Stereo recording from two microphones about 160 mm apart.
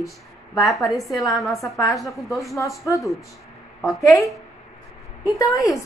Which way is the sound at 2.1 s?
Centre (ahead or behind).